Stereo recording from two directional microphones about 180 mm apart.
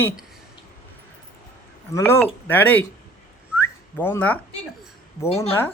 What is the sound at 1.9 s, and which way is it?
Speech, 10° left (ahead or behind).